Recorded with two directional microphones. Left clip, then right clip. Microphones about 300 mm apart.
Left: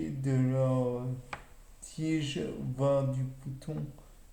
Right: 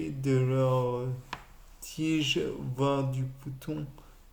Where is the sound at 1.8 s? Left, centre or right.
Right.